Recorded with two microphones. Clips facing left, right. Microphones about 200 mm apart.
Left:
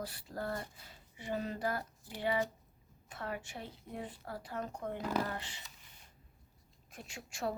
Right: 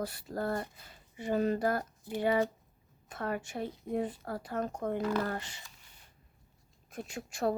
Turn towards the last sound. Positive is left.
turn(degrees=-40)  # may be behind; listen again after turning